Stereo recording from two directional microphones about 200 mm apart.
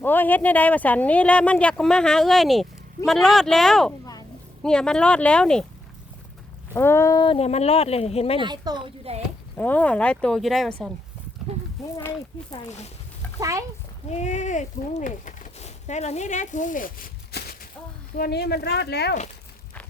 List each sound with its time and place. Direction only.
0.0 s speech: 10° left (ahead or behind)
6.7 s speech: 10° left (ahead or behind); by 8.4 s 30° left (ahead or behind)
8.4 s speech: 20° right (ahead or behind)
9.6 s speech: 10° left (ahead or behind)
11.9 s speech: 10° left (ahead or behind)
13.4 s a child's voice: 15° right (ahead or behind)
14.1 s speech: 35° left (ahead or behind); by 19.1 s 55° left (ahead or behind)